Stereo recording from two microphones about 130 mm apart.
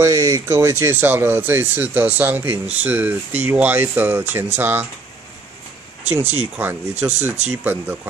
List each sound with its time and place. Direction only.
0.0 s speech: 25° right (ahead or behind)
6.2 s speech: 50° right (ahead or behind)
6.5 s speech: 15° right (ahead or behind)